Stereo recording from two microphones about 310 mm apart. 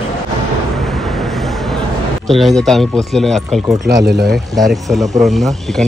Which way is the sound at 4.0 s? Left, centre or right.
Right.